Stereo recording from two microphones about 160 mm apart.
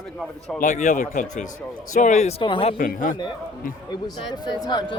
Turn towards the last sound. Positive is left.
turn(degrees=25)  # may be behind; listen again after turning